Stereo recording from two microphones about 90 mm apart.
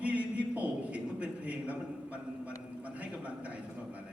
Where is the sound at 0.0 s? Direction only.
15° right (ahead or behind).